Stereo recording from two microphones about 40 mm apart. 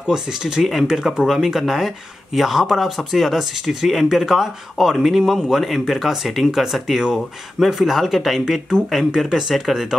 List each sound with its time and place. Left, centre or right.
0.0 s a man's voice: centre